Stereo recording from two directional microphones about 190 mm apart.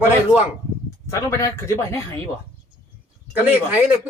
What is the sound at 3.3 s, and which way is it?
Speech, 10° right (ahead or behind).